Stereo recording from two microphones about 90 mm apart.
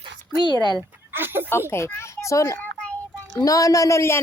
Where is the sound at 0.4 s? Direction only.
55° left (ahead or behind).